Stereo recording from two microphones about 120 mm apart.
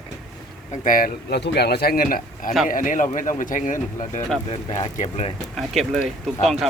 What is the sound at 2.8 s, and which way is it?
Speech, 90° left.